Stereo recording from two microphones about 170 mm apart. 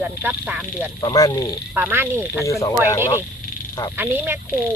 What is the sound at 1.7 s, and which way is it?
Speech, 10° right (ahead or behind).